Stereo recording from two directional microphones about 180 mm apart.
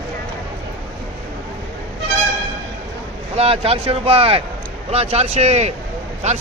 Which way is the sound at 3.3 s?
35° right (ahead or behind).